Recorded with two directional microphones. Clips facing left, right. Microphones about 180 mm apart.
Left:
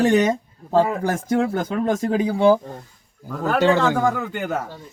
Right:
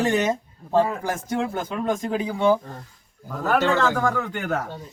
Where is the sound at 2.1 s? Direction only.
35° left (ahead or behind).